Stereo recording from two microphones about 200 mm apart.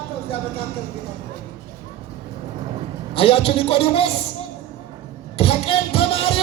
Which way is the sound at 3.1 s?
30° left (ahead or behind).